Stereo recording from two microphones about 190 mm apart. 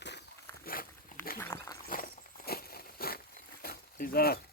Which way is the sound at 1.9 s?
50° left (ahead or behind).